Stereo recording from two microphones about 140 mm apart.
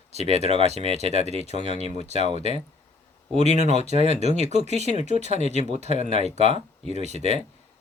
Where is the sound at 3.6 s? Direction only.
50° right (ahead or behind).